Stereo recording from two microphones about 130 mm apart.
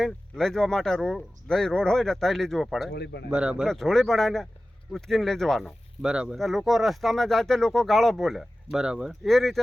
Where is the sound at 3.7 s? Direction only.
5° left (ahead or behind).